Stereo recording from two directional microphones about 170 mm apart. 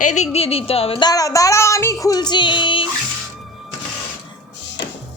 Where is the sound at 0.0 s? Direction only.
45° left (ahead or behind).